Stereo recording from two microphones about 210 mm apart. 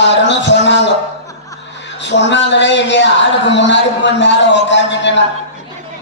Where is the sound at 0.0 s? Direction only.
60° left (ahead or behind).